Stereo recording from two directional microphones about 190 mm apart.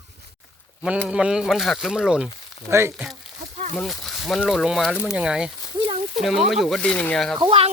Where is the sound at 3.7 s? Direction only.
Centre (ahead or behind).